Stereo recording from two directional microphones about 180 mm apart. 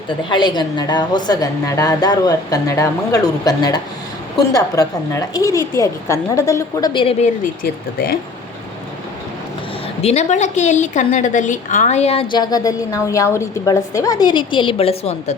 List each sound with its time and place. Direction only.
0.1 s a woman's voice: 25° left (ahead or behind)
10.0 s a woman's voice: 35° left (ahead or behind)